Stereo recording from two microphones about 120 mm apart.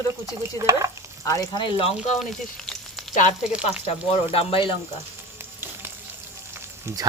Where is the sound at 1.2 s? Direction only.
30° left (ahead or behind); by 2.1 s 50° left (ahead or behind).